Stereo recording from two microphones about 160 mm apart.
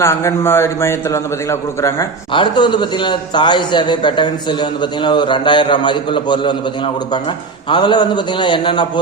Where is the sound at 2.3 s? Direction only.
30° left (ahead or behind).